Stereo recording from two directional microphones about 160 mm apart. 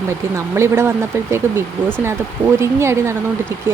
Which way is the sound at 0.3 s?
15° right (ahead or behind).